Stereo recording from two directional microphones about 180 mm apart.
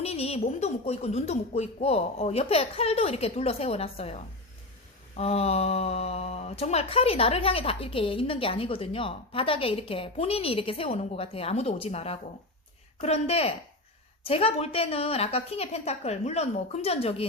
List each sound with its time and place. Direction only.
0.0 s speech: 35° left (ahead or behind)